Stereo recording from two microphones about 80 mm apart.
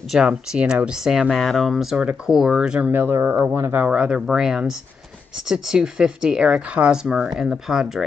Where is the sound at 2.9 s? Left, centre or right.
Right.